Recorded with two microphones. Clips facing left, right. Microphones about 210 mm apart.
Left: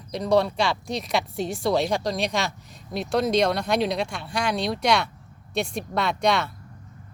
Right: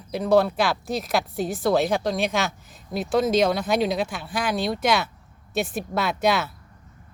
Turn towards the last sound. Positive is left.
turn(degrees=-5)  # may be behind; listen again after turning